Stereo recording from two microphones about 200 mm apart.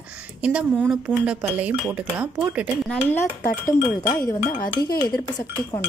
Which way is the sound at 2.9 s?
10° left (ahead or behind).